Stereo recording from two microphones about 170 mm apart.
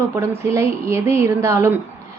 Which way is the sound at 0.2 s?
15° right (ahead or behind).